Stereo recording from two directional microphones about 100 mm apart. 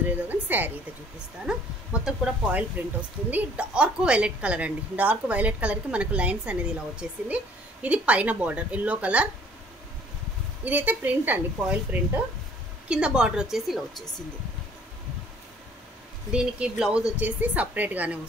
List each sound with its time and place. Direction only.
0.3 s a woman's voice: 20° right (ahead or behind)
1.5 s a woman's voice: 10° right (ahead or behind)
10.6 s a woman's voice: 15° right (ahead or behind)
16.3 s a woman's voice: 10° right (ahead or behind)